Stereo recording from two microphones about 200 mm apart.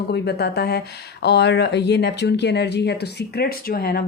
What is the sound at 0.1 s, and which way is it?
Speech, 55° left (ahead or behind).